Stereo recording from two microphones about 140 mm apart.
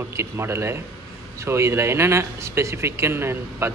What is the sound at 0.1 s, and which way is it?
A man's voice, 20° right (ahead or behind).